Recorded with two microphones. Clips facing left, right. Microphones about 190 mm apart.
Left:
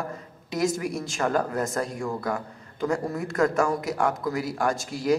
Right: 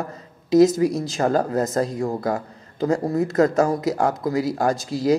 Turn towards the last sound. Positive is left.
turn(degrees=-35)  # may be behind; listen again after turning